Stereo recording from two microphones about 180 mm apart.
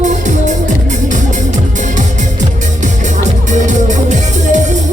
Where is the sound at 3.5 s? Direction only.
40° right (ahead or behind).